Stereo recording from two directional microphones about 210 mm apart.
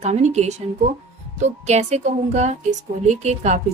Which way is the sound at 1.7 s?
30° right (ahead or behind).